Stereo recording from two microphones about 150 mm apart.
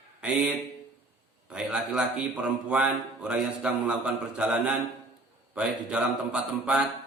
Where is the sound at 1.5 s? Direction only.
5° right (ahead or behind).